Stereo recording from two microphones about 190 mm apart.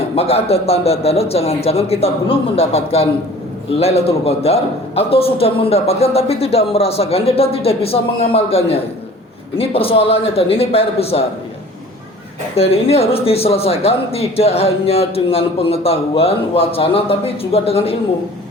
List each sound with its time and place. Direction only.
0.2 s speech: 30° left (ahead or behind)
12.5 s speech: 30° left (ahead or behind)